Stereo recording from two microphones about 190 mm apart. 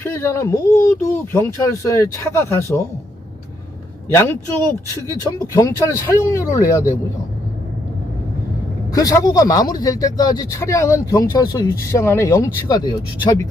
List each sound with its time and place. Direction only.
0.0 s speech: 10° left (ahead or behind)
4.1 s speech: 15° left (ahead or behind)
8.9 s speech: 20° left (ahead or behind)